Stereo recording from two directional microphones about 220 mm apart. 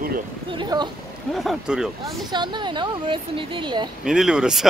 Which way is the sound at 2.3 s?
20° right (ahead or behind).